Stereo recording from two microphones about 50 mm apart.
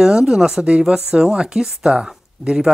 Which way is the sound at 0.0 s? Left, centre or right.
Centre.